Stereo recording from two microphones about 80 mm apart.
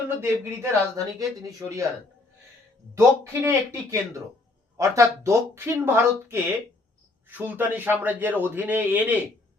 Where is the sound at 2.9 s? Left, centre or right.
Right.